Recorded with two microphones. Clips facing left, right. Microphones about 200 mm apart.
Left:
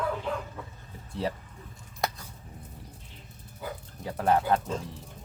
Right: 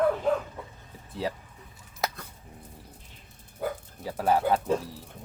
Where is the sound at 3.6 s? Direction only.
55° right (ahead or behind).